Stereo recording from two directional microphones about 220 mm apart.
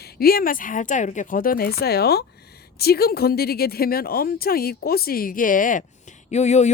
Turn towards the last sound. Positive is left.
turn(degrees=30)  # may be behind; listen again after turning